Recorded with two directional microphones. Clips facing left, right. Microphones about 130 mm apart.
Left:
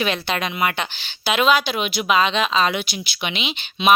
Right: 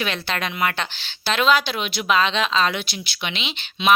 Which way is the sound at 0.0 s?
15° left (ahead or behind).